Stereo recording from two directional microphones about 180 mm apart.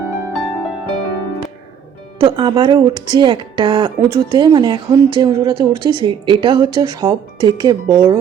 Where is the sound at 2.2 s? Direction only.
25° right (ahead or behind).